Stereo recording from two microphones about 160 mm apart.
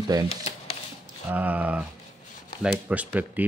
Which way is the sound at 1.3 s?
10° right (ahead or behind).